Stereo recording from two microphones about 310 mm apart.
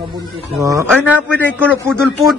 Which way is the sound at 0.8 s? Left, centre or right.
Centre.